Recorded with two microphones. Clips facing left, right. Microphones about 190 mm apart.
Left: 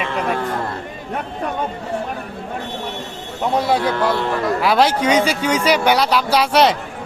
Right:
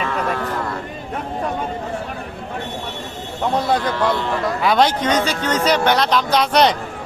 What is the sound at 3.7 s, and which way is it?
A man's voice, 10° left (ahead or behind).